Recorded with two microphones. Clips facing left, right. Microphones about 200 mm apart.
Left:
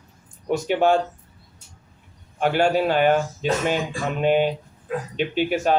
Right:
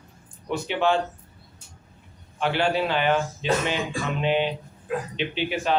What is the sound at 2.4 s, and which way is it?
Speech, 45° left (ahead or behind).